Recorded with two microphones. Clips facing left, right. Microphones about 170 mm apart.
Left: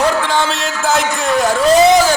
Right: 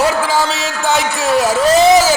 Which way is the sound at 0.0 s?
5° right (ahead or behind).